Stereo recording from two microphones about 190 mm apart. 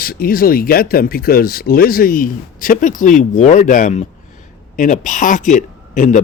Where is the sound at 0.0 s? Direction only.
50° left (ahead or behind).